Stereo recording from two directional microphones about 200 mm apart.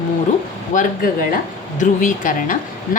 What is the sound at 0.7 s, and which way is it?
A woman's voice, 45° left (ahead or behind).